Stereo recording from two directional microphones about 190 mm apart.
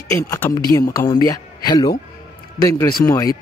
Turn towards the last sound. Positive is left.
turn(degrees=20)  # may be behind; listen again after turning